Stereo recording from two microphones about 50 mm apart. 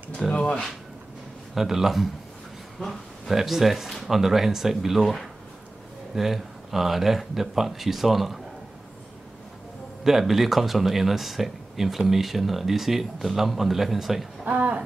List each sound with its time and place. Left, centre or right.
0.3 s speech: centre
1.5 s speech: centre
10.0 s speech: centre
14.4 s a sound: right